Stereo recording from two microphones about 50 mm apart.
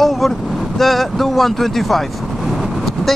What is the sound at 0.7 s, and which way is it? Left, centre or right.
Speech, centre.